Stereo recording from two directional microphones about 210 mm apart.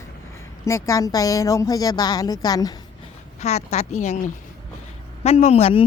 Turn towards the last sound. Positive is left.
turn(degrees=30)  # may be behind; listen again after turning